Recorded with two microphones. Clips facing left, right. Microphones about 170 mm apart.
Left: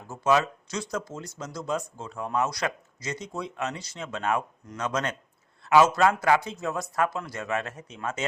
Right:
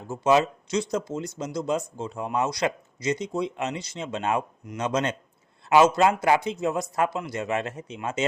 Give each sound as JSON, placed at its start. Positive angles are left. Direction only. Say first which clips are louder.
{"t": 0.1, "sound": "speech", "louder": "right 3 dB", "side_deg": -20}